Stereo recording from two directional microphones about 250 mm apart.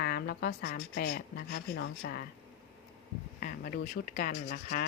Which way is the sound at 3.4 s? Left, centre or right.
Left.